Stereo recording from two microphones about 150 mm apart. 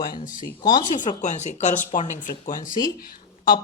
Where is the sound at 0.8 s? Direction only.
60° left (ahead or behind).